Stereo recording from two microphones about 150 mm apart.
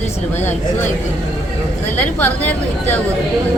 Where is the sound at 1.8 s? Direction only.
10° left (ahead or behind).